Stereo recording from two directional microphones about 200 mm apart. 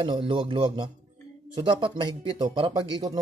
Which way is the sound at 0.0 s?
25° right (ahead or behind).